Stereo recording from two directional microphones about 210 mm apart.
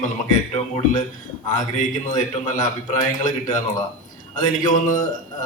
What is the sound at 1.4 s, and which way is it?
A man's voice, 40° left (ahead or behind).